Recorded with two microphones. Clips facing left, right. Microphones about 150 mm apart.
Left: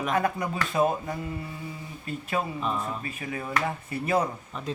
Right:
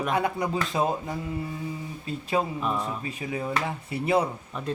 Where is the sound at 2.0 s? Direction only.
25° right (ahead or behind).